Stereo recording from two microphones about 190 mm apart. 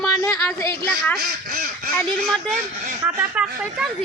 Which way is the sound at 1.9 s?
Centre (ahead or behind).